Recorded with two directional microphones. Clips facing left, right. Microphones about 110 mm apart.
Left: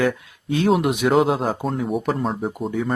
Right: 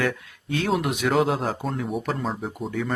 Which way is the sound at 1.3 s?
5° left (ahead or behind).